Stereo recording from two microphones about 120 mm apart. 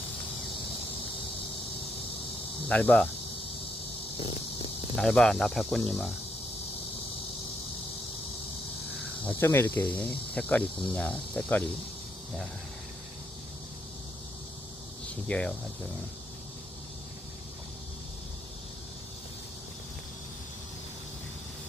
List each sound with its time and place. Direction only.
2.6 s cricket: 10° left (ahead or behind)
4.2 s a sound: 50° left (ahead or behind)
4.9 s speech: 5° left (ahead or behind)
9.4 s cricket: 20° left (ahead or behind)
15.3 s cricket: 10° left (ahead or behind)